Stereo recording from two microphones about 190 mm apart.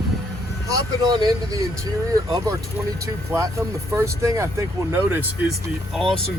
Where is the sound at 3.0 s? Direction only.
15° right (ahead or behind).